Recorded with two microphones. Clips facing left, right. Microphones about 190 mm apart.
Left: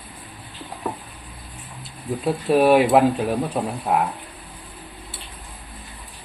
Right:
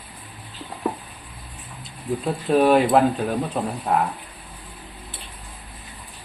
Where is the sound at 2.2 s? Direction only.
5° left (ahead or behind).